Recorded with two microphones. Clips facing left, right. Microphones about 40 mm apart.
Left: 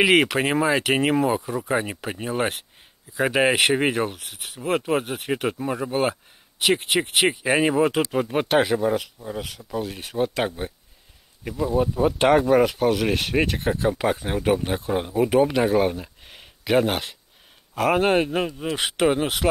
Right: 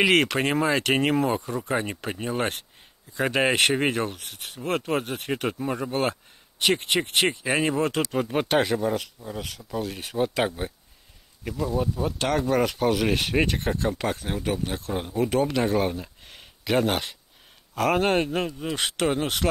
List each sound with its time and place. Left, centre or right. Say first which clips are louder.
0.0 s speech: left 2 dB; centre
11.4 s speech: left 4 dB; centre
12.4 s speech: left 4 dB; centre